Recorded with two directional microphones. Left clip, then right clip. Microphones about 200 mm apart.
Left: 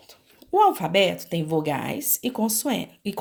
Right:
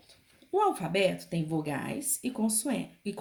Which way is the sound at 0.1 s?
40° left (ahead or behind).